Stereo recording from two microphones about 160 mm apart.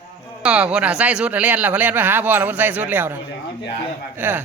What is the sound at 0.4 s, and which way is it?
Speech, 5° right (ahead or behind).